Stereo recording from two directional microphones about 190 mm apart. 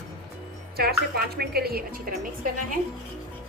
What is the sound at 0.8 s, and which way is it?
A woman's voice, 55° right (ahead or behind).